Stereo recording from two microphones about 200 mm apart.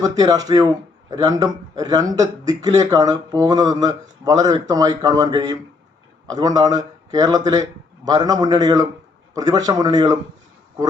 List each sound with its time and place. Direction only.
0.0 s a man's voice: 20° right (ahead or behind)